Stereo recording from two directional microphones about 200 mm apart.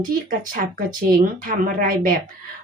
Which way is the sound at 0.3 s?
45° right (ahead or behind).